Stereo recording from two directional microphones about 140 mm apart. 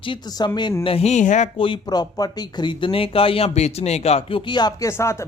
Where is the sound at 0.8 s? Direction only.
45° left (ahead or behind).